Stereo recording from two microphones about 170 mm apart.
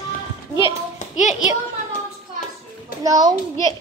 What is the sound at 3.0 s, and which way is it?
Speech, 25° right (ahead or behind).